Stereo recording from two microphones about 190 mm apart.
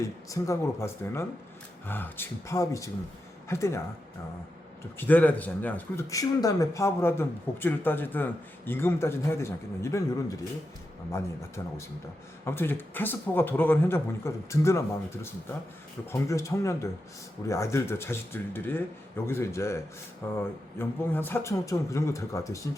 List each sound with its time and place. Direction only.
0.0 s speech: 15° left (ahead or behind)
4.9 s speech: 10° left (ahead or behind)
12.5 s speech: 10° left (ahead or behind)